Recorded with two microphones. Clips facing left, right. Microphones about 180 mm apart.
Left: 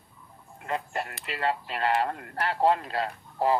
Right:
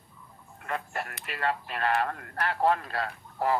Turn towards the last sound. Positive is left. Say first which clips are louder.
# left 3 dB
turn(degrees=20)  # may be behind; listen again after turning